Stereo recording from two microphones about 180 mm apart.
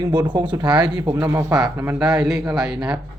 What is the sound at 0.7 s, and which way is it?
Speech, 5° right (ahead or behind).